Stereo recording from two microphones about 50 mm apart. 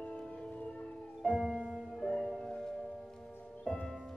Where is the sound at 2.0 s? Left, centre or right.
Centre.